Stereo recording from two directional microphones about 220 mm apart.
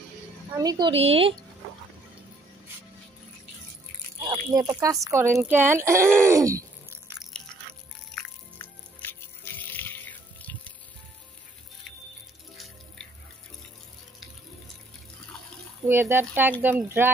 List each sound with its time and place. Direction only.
0.6 s a woman's voice: 20° right (ahead or behind)
4.5 s speech: 10° right (ahead or behind)
8.1 s music: 10° left (ahead or behind)
15.9 s speech: 10° right (ahead or behind)